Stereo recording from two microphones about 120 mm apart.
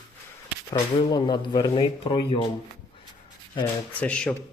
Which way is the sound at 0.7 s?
40° left (ahead or behind).